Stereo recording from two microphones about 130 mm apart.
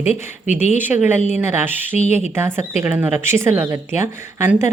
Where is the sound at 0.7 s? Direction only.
15° right (ahead or behind).